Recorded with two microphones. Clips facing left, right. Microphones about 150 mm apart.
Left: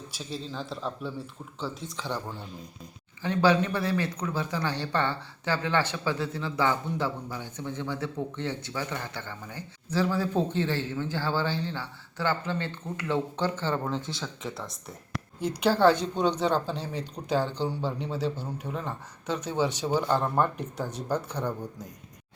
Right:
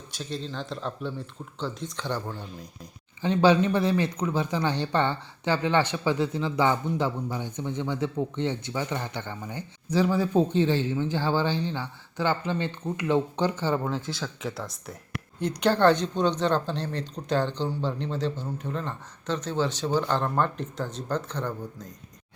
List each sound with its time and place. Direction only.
0.1 s speech: 5° left (ahead or behind)
3.2 s a woman's voice: 20° right (ahead or behind); by 21.8 s 10° left (ahead or behind)